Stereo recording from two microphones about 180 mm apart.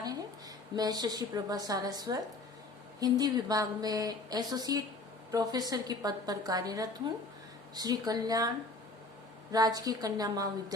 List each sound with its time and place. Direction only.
0.8 s speech: 20° right (ahead or behind)